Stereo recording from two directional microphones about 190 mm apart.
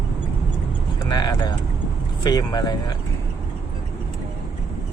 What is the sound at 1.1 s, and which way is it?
Vehicle, 20° left (ahead or behind).